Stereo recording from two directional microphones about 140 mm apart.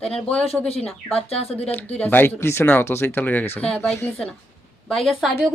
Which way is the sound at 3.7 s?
Centre (ahead or behind).